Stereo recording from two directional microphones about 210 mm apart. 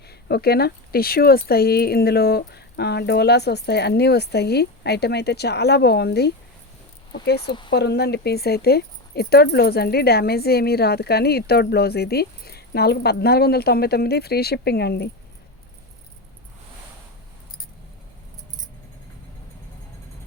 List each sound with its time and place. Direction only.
0.1 s speech: 50° left (ahead or behind)